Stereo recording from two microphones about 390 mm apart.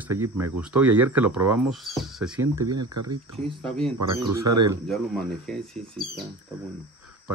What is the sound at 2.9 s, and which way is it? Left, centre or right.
Speech, right.